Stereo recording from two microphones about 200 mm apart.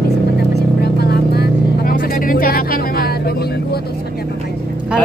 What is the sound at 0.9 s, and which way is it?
Vehicle, 55° left (ahead or behind).